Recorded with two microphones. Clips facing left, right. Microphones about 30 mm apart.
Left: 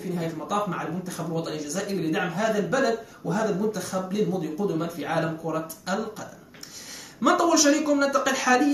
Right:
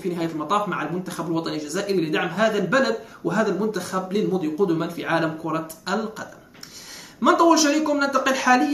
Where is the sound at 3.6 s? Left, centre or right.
Right.